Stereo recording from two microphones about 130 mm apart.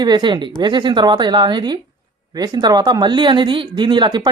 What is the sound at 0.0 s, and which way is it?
Speech, 35° right (ahead or behind).